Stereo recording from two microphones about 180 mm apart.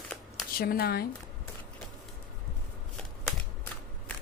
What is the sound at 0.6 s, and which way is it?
Speech, 55° left (ahead or behind).